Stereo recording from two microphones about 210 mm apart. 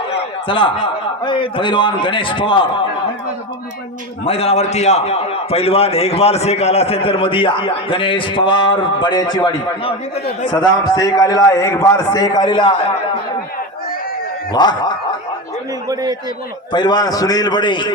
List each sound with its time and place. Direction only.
0.4 s a man's voice: 25° left (ahead or behind)
4.3 s a man's voice: 30° left (ahead or behind)
14.5 s a man's voice: 20° left (ahead or behind)
15.9 s a man's voice: 20° right (ahead or behind)
16.7 s a man's voice: 20° left (ahead or behind)